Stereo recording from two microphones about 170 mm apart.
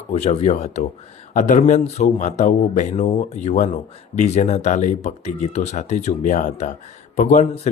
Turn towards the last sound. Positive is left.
turn(degrees=45)  # may be behind; listen again after turning